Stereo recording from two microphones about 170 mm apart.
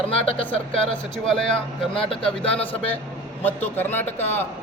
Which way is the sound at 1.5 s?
30° left (ahead or behind).